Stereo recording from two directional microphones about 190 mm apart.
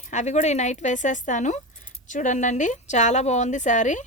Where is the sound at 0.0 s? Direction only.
40° left (ahead or behind).